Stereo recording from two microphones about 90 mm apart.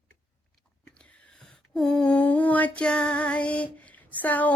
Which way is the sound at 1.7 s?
5° left (ahead or behind).